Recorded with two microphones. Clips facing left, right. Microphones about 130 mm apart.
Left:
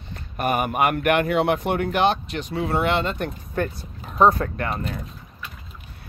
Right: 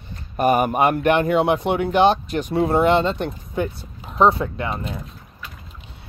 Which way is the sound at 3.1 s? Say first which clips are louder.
Right 2 dB; 15° right (ahead or behind).